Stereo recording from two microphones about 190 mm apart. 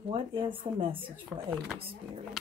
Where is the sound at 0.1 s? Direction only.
30° right (ahead or behind).